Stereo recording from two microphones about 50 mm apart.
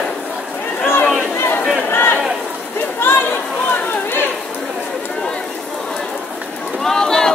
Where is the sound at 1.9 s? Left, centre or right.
Left.